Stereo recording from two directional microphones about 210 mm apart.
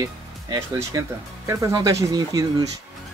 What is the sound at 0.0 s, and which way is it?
Speech, 15° right (ahead or behind).